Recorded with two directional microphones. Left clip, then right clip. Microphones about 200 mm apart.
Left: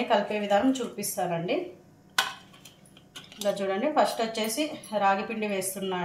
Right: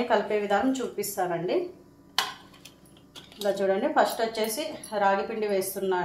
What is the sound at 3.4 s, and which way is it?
A woman's voice, 20° right (ahead or behind).